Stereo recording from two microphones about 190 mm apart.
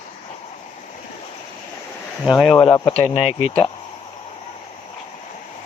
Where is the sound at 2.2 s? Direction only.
5° right (ahead or behind).